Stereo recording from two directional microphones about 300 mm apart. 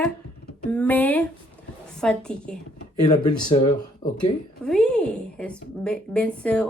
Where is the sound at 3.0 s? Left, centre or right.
Centre.